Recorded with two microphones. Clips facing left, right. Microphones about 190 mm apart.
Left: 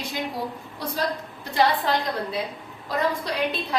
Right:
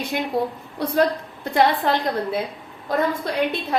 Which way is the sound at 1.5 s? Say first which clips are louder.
Right 3 dB; 55° right (ahead or behind).